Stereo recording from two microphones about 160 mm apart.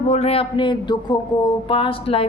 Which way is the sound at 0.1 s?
40° left (ahead or behind).